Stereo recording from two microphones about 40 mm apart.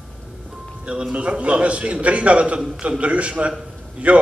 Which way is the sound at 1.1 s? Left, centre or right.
Right.